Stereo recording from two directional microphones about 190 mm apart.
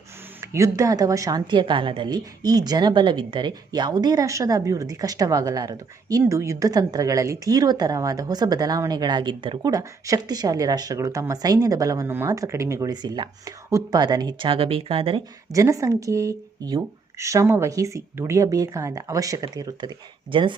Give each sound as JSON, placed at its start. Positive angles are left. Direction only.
{"t": 0.5, "sound": "a woman's voice", "side_deg": -15}
{"t": 15.5, "sound": "a woman's voice", "side_deg": -15}